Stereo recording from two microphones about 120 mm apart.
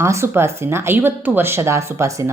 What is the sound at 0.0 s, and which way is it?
A woman's voice, 25° right (ahead or behind).